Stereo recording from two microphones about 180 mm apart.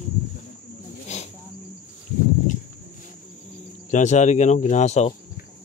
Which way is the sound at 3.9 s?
40° left (ahead or behind).